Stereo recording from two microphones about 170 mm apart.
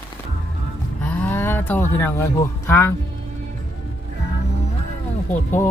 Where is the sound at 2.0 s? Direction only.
15° left (ahead or behind).